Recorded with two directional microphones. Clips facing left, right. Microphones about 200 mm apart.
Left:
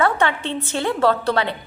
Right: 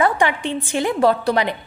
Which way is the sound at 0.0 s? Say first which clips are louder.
Right 1 dB; 15° right (ahead or behind).